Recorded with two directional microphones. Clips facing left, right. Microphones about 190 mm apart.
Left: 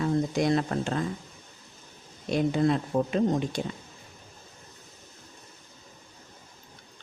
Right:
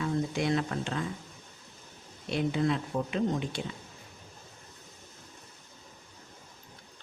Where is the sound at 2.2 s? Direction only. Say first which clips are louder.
Left 4 dB; 40° left (ahead or behind).